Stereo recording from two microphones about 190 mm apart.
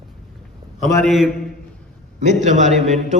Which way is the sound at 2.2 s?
40° right (ahead or behind).